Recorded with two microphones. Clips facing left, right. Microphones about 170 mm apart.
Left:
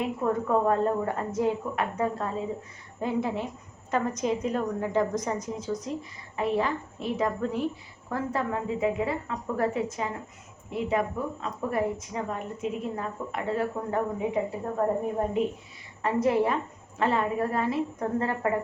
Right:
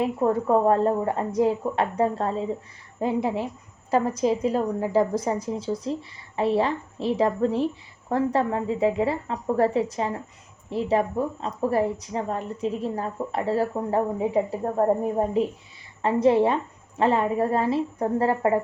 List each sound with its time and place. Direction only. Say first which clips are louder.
0.0 s a woman's voice: right 5 dB; 30° right (ahead or behind)
16.0 s a woman's voice: right 5 dB; 30° right (ahead or behind)